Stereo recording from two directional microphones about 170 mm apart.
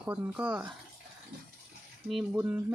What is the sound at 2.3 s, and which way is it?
Speech, 10° right (ahead or behind).